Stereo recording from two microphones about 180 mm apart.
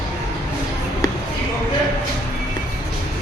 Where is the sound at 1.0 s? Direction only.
20° left (ahead or behind).